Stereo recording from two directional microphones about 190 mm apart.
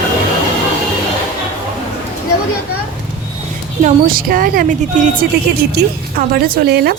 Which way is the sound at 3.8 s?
45° right (ahead or behind).